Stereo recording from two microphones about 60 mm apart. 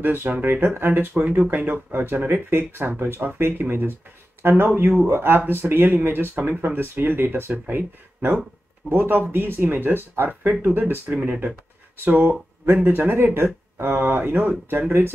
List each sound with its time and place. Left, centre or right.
0.0 s speech: right
0.7 s speech: right
7.5 s speech: right